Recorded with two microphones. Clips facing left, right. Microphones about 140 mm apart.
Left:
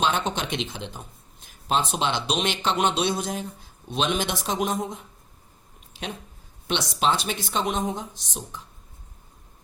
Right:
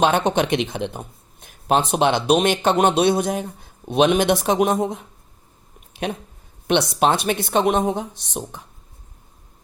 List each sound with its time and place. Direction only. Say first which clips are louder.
0.0 s speech: right 7 dB; 60° right (ahead or behind)
5.9 s a sound: right 8 dB; 60° right (ahead or behind)
6.7 s speech: right 6 dB; 55° right (ahead or behind)